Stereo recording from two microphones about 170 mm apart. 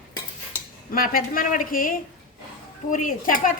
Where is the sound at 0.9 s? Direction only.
55° left (ahead or behind).